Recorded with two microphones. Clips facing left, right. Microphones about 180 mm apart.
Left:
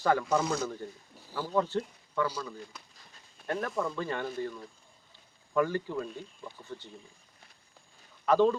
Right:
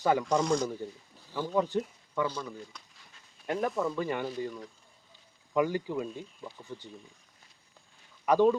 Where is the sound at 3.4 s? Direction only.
15° right (ahead or behind).